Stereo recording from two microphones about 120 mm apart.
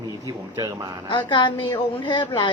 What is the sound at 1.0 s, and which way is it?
Speech, 40° left (ahead or behind).